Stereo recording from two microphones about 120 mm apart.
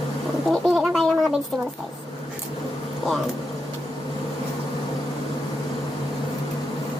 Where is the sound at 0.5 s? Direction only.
Centre (ahead or behind).